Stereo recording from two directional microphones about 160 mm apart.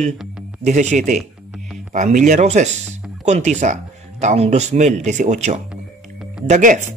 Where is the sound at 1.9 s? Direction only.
50° right (ahead or behind).